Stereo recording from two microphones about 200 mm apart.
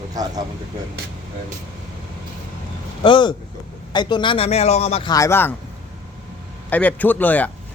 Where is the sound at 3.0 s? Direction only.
25° left (ahead or behind).